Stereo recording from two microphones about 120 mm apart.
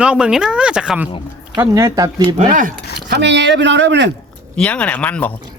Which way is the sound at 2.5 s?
90° right.